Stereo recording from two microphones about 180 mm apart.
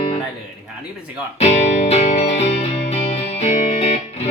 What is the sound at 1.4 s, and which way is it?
Music, 40° left (ahead or behind).